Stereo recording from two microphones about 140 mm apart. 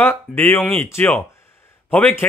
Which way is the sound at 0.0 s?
15° left (ahead or behind).